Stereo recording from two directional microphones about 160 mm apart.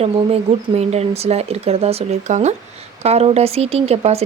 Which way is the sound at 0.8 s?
40° right (ahead or behind).